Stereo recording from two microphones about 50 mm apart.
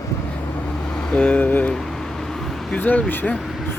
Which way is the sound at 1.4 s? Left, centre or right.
Left.